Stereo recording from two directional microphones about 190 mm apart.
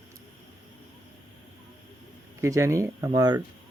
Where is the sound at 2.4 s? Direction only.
15° right (ahead or behind).